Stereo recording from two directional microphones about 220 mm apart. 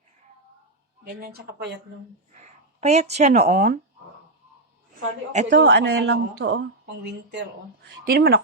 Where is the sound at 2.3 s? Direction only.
30° right (ahead or behind).